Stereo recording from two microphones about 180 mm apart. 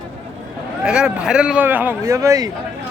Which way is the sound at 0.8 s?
5° right (ahead or behind).